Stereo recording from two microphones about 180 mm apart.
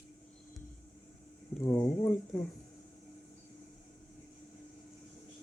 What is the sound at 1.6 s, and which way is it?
Speech, 10° left (ahead or behind).